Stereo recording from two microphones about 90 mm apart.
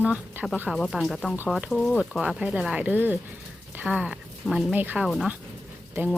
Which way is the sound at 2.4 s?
10° right (ahead or behind).